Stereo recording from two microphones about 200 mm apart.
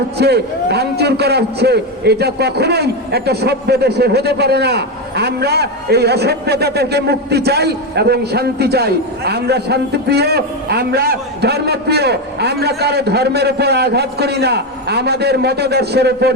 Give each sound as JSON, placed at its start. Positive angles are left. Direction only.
{"t": 0.2, "sound": "a man's voice", "side_deg": -55}